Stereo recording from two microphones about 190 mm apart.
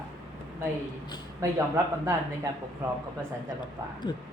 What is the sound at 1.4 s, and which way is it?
Speech, 15° right (ahead or behind).